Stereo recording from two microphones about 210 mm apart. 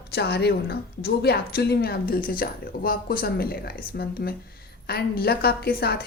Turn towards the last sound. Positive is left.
turn(degrees=45)  # may be behind; listen again after turning